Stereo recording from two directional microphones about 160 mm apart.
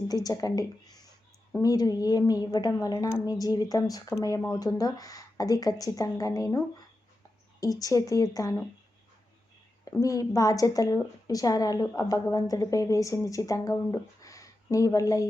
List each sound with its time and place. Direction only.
0.1 s a woman's voice: 25° left (ahead or behind)
4.4 s speech: 10° left (ahead or behind)
4.6 s a woman's voice: 25° left (ahead or behind)
7.6 s a woman's voice: 25° left (ahead or behind)
10.0 s a woman's voice: 20° left (ahead or behind)